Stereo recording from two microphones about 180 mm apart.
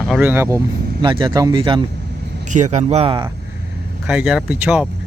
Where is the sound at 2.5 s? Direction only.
40° right (ahead or behind).